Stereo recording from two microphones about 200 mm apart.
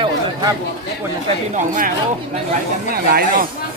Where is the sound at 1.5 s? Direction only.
40° right (ahead or behind).